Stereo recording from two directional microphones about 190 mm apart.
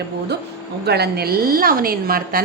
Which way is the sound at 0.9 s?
60° right (ahead or behind).